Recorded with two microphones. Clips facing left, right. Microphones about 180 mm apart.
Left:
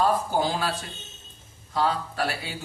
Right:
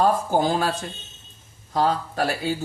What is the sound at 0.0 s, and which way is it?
Speech, 50° right (ahead or behind).